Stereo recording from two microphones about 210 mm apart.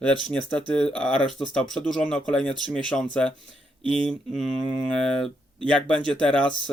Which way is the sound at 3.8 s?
25° right (ahead or behind).